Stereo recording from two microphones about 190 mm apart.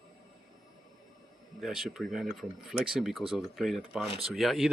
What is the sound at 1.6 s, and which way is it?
Speech, centre (ahead or behind).